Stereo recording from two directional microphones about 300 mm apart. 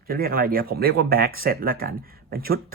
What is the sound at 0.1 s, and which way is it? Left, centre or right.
Speech, right.